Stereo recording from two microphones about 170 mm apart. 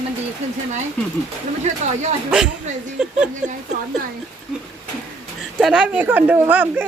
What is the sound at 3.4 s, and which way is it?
Speech, 5° right (ahead or behind).